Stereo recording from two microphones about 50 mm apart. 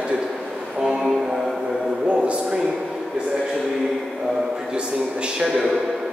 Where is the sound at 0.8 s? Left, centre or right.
Centre.